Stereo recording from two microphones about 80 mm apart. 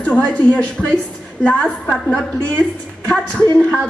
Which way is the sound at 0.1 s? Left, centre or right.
Centre.